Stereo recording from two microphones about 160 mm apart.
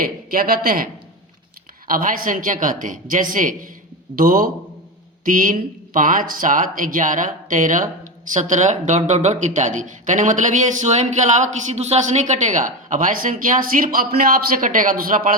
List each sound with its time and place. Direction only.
0.0 s speech: 65° right (ahead or behind)
1.9 s speech: 60° right (ahead or behind)